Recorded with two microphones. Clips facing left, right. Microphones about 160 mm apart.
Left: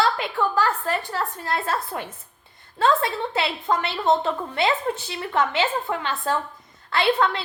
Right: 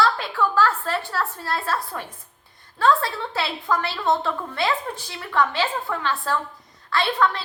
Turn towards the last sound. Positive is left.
turn(degrees=25)  # may be behind; listen again after turning